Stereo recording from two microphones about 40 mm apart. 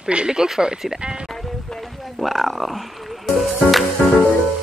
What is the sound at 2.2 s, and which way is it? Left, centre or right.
Music, centre.